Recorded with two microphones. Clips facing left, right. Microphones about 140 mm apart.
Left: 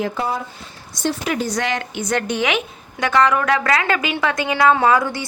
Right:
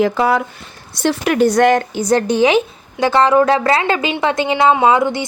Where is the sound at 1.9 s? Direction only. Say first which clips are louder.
Right 7 dB; 35° right (ahead or behind).